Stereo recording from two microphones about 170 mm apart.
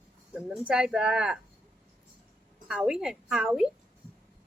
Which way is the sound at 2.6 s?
5° right (ahead or behind).